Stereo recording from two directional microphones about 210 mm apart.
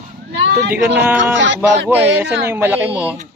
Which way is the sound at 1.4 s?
55° right (ahead or behind).